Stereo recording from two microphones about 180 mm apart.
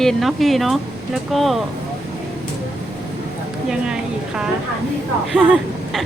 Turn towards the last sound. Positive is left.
turn(degrees=0)  # may be behind; listen again after turning